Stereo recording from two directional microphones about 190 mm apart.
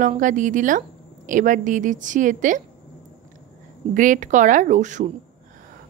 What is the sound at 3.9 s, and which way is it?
A woman's voice, 45° right (ahead or behind).